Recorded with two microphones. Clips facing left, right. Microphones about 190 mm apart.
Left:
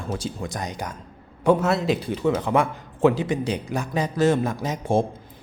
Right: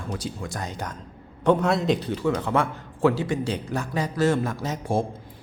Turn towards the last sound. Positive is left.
turn(degrees=20)  # may be behind; listen again after turning